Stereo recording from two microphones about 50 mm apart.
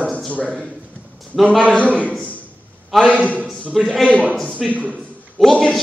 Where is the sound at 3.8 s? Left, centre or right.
Centre.